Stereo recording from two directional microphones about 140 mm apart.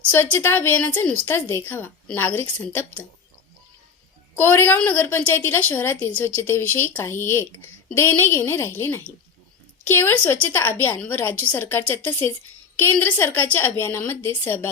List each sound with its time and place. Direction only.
0.1 s a woman's voice: 15° left (ahead or behind)
4.4 s a woman's voice: 15° left (ahead or behind)